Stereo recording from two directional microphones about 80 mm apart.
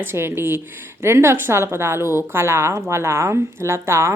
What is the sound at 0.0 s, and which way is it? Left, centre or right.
A woman's voice, right.